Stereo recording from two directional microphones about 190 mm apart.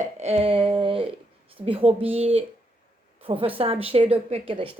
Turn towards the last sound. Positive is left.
turn(degrees=-30)  # may be behind; listen again after turning